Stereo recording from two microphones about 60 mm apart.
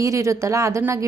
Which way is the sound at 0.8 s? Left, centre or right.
Right.